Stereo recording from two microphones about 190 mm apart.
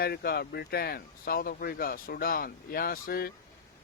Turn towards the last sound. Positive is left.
turn(degrees=50)  # may be behind; listen again after turning